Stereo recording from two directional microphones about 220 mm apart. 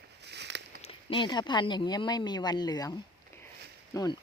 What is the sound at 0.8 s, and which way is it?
Speech, 25° left (ahead or behind).